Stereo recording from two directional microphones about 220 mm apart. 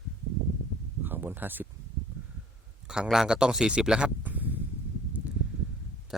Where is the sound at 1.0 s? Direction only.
10° right (ahead or behind).